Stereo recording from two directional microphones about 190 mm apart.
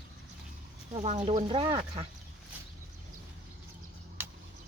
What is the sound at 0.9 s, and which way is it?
Speech, 35° right (ahead or behind).